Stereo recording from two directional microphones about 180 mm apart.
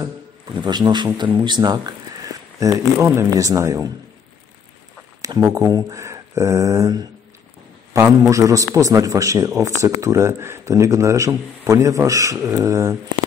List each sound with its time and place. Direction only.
0.6 s speech: 25° right (ahead or behind)
5.2 s a man's voice: 20° right (ahead or behind)